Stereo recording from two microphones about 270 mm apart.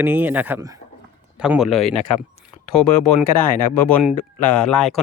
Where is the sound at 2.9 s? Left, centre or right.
Left.